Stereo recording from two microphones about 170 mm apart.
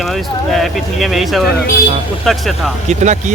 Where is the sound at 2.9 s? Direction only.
45° right (ahead or behind).